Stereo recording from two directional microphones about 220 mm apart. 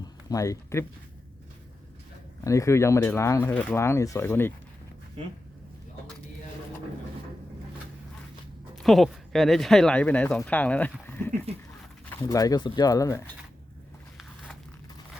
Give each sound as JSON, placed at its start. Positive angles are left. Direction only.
{"t": 0.3, "sound": "speech", "side_deg": 15}
{"t": 2.4, "sound": "speech", "side_deg": 15}
{"t": 8.7, "sound": "speech", "side_deg": 0}
{"t": 11.5, "sound": "speech", "side_deg": -25}
{"t": 12.3, "sound": "speech", "side_deg": 15}